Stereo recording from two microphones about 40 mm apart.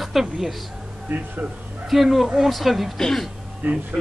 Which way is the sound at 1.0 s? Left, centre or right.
Right.